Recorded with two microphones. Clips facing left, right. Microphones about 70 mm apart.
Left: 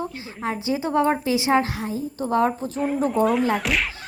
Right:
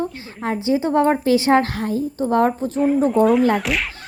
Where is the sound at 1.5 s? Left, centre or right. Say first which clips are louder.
Right 4 dB; right.